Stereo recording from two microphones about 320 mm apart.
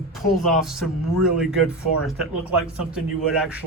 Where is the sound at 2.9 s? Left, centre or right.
Centre.